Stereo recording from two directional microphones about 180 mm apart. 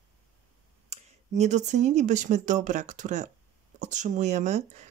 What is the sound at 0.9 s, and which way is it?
Speech, 40° right (ahead or behind).